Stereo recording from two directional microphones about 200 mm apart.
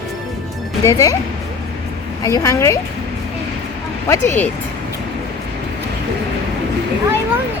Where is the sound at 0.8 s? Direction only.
15° left (ahead or behind).